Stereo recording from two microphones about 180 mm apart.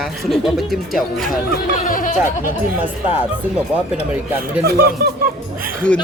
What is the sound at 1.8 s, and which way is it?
Speech, 50° left (ahead or behind).